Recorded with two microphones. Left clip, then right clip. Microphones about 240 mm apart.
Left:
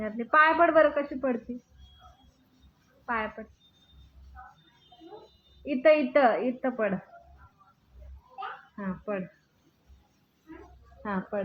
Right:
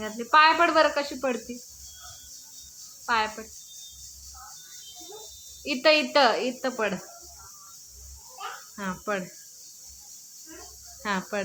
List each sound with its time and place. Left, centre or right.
0.0 s speech: centre
3.1 s speech: centre
5.6 s speech: centre
8.7 s speech: right
11.0 s speech: right